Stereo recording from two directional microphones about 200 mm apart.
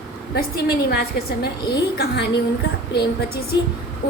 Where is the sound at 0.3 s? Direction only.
50° left (ahead or behind).